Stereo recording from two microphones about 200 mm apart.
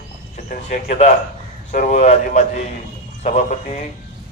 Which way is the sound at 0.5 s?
40° left (ahead or behind).